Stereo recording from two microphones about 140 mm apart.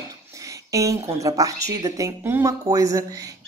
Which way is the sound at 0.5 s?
25° right (ahead or behind).